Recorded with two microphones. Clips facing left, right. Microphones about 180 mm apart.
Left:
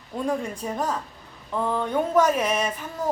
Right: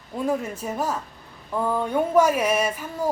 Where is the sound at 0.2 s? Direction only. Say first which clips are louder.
Right 1 dB; 5° right (ahead or behind).